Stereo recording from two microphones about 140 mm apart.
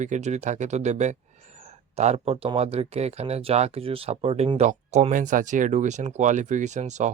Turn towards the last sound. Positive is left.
turn(degrees=-55)  # may be behind; listen again after turning